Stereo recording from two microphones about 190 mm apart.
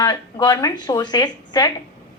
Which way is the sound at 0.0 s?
20° left (ahead or behind).